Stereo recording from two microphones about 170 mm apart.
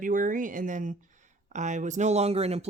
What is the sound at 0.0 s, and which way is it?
Speech, 50° right (ahead or behind).